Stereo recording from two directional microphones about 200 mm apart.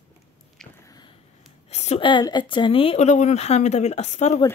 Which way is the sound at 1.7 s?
35° left (ahead or behind).